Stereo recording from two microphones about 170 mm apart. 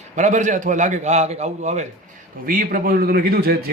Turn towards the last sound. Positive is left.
turn(degrees=-65)  # may be behind; listen again after turning